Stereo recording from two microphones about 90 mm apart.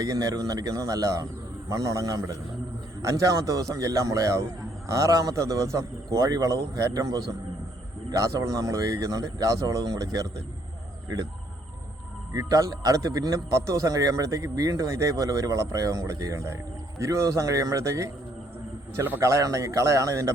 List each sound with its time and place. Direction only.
0.0 s a man's voice: 40° right (ahead or behind)
12.3 s a man's voice: 40° right (ahead or behind)
18.9 s a man's voice: 20° right (ahead or behind)
19.2 s a man's voice: 35° right (ahead or behind)